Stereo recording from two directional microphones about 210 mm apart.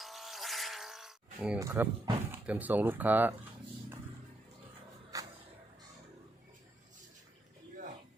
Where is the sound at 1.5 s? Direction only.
15° right (ahead or behind).